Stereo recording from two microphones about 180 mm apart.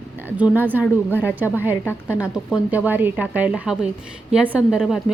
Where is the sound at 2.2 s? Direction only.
5° right (ahead or behind).